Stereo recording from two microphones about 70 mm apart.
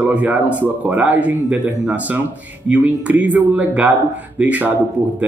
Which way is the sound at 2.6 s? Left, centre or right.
Centre.